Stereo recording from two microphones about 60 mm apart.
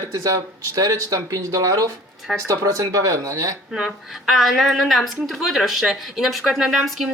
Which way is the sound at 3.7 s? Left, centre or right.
Centre.